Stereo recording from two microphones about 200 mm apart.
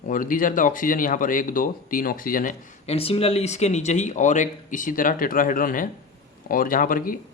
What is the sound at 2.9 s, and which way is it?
Speech, 30° left (ahead or behind).